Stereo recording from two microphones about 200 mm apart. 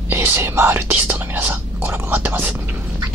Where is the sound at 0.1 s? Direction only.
10° right (ahead or behind).